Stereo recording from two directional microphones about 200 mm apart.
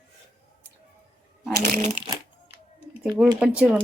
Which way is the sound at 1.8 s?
35° right (ahead or behind).